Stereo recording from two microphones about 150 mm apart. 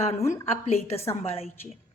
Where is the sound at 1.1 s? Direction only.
45° left (ahead or behind).